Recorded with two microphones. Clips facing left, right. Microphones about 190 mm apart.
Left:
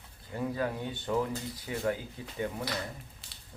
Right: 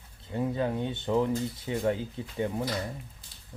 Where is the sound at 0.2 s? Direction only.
25° right (ahead or behind).